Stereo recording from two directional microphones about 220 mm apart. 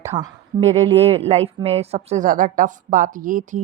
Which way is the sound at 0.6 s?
30° right (ahead or behind).